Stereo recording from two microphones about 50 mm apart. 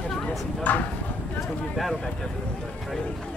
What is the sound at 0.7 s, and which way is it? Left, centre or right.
Speech, left.